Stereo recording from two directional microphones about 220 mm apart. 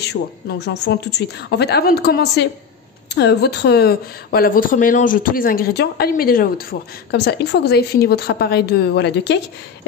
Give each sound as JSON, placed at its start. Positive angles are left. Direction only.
{"t": 0.0, "sound": "speech", "side_deg": 50}